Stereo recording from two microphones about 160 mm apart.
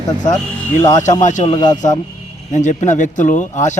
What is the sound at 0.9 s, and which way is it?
Speech, 50° left (ahead or behind).